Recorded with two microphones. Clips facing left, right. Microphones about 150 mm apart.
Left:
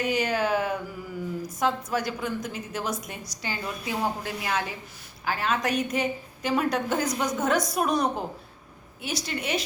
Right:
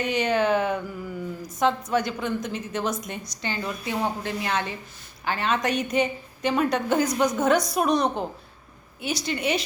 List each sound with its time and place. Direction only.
0.0 s a woman's voice: 5° left (ahead or behind)